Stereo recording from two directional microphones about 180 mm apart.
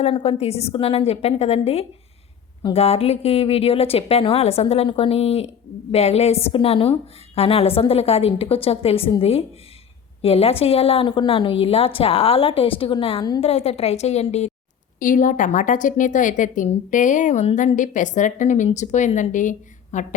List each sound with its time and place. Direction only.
0.0 s a woman's voice: 35° left (ahead or behind)
14.9 s a woman's voice: 45° left (ahead or behind)